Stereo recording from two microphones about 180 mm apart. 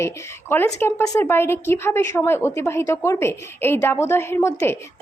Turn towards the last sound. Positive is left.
turn(degrees=15)  # may be behind; listen again after turning